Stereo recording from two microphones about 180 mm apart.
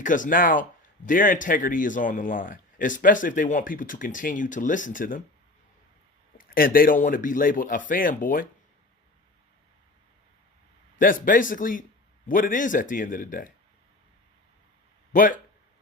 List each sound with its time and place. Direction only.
0.0 s speech: 45° left (ahead or behind)
6.3 s speech: 50° left (ahead or behind)
11.0 s speech: 50° left (ahead or behind)
15.1 s speech: 45° left (ahead or behind)